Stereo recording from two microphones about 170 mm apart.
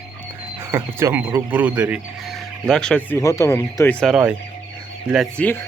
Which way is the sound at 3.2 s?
15° left (ahead or behind).